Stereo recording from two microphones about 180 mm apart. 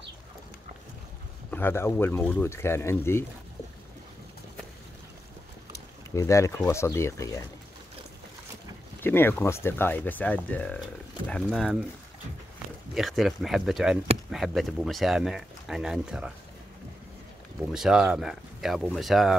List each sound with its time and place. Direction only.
1.5 s speech: 10° left (ahead or behind)
6.1 s speech: 15° left (ahead or behind)
9.0 s speech: 10° left (ahead or behind)
12.9 s speech: centre (ahead or behind)
17.7 s speech: 5° right (ahead or behind)